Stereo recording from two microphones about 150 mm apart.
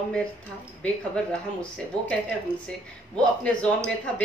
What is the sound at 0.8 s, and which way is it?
Speech, 5° left (ahead or behind).